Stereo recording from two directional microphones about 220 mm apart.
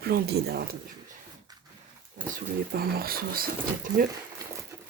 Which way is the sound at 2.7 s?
40° right (ahead or behind).